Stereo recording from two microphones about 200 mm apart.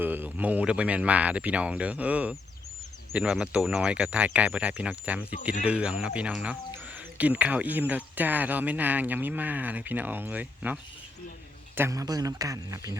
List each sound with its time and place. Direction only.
0.0 s speech: 10° right (ahead or behind)